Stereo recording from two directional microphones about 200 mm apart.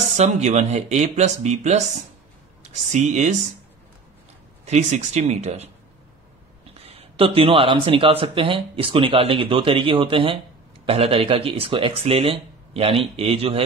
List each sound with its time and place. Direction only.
0.2 s speech: 35° right (ahead or behind)
4.6 s speech: 35° right (ahead or behind)
6.7 s speech: 30° right (ahead or behind)